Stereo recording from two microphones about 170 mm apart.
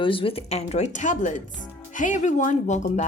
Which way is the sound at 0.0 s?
30° left (ahead or behind).